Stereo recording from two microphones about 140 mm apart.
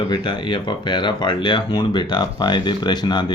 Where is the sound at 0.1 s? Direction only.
35° left (ahead or behind).